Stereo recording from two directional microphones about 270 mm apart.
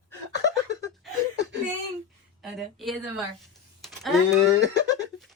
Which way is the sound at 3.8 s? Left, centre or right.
Centre.